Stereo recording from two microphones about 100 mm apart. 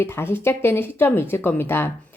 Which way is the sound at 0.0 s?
25° left (ahead or behind).